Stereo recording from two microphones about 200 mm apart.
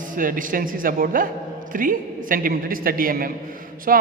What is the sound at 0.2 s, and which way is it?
A man's voice, 45° right (ahead or behind).